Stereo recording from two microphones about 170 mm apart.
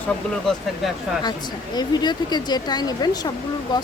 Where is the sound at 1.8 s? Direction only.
25° left (ahead or behind).